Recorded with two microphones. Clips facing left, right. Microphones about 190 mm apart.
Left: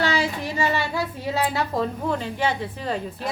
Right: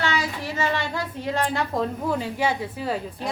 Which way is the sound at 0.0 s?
30° left (ahead or behind).